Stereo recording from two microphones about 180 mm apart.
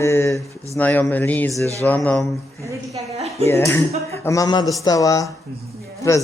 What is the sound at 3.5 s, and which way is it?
A man's voice, 15° left (ahead or behind).